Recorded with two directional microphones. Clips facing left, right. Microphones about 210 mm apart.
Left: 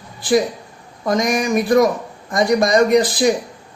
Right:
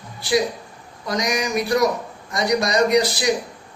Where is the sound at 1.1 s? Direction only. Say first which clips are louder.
Left 5 dB; 50° left (ahead or behind).